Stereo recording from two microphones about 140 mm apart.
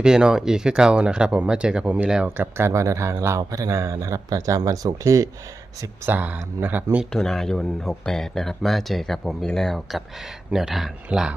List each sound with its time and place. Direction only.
0.0 s speech: 5° right (ahead or behind); by 5.3 s 25° right (ahead or behind)
6.1 s speech: 10° right (ahead or behind)
7.1 s speech: 5° left (ahead or behind)